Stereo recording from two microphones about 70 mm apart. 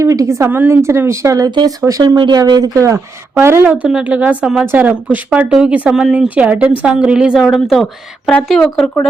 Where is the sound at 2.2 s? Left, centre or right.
Right.